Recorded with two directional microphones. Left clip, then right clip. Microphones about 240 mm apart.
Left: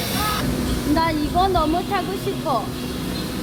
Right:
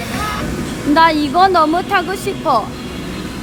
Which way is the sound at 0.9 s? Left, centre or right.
Right.